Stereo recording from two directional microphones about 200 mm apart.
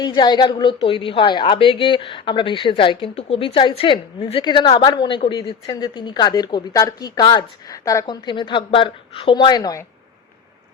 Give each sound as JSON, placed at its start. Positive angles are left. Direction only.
{"t": 0.0, "sound": "a woman's voice", "side_deg": 20}